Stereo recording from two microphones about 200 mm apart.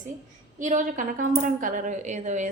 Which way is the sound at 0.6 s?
40° right (ahead or behind).